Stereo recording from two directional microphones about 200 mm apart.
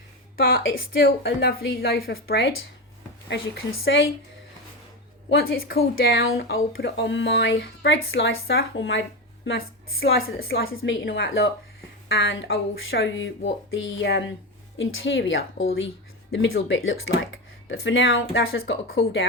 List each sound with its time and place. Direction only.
0.3 s a woman's voice: 50° left (ahead or behind); by 4.0 s 80° left
5.3 s a woman's voice: 55° left (ahead or behind)
9.6 s a woman's voice: 50° left (ahead or behind)
10.6 s a woman's voice: 90° left
11.1 s speech: 75° left (ahead or behind)
14.8 s speech: 75° left (ahead or behind)
16.3 s speech: 60° left (ahead or behind); by 18.6 s 85° left
19.0 s speech: 65° left (ahead or behind)